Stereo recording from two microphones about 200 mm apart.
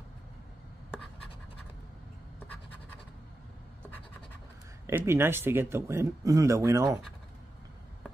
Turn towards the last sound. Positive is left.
turn(degrees=-15)  # may be behind; listen again after turning